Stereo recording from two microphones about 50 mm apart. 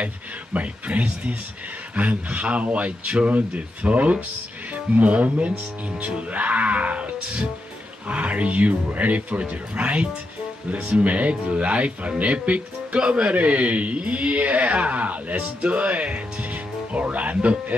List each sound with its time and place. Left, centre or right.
0.0 s speech: right